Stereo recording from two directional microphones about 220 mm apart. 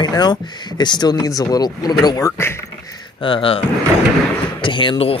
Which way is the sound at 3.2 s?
20° left (ahead or behind).